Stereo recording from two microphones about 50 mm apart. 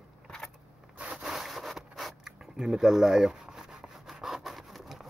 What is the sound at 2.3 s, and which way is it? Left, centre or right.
Rub, centre.